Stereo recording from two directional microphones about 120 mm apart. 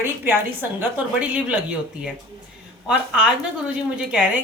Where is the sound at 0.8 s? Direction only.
10° right (ahead or behind).